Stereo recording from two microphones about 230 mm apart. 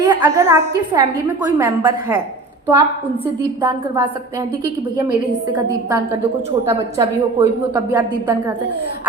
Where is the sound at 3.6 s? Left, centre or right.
Centre.